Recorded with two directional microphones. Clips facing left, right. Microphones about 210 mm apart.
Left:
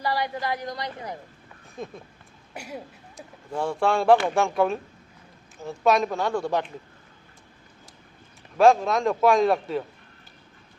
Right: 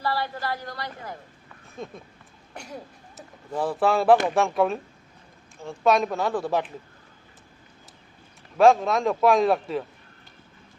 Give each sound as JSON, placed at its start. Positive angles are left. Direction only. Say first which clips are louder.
{"t": 0.0, "sound": "a woman's voice", "louder": "left 1 dB", "side_deg": 15}
{"t": 1.8, "sound": "a man's voice", "louder": "left 1 dB", "side_deg": 0}
{"t": 3.2, "sound": "a man's voice", "louder": "right 1 dB", "side_deg": -5}
{"t": 8.5, "sound": "a man's voice", "louder": "even", "side_deg": 0}